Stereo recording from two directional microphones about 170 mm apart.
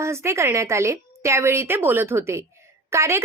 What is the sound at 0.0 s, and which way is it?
Speech, 15° right (ahead or behind).